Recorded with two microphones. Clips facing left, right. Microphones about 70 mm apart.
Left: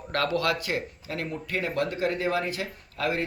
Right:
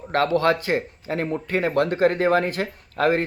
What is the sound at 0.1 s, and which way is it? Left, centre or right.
Speech, right.